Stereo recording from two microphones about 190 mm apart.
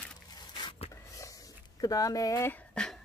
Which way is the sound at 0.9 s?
15° left (ahead or behind).